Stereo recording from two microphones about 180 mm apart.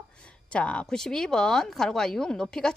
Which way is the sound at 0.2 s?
5° left (ahead or behind).